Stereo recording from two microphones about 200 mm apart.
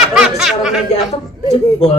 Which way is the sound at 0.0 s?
Centre (ahead or behind).